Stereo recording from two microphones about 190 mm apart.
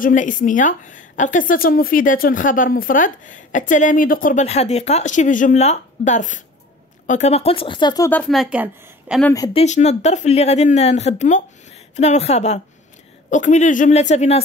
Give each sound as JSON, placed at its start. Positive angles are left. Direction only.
{"t": 0.0, "sound": "a woman's voice", "side_deg": 40}
{"t": 8.1, "sound": "a woman's voice", "side_deg": 5}
{"t": 9.5, "sound": "speech", "side_deg": 35}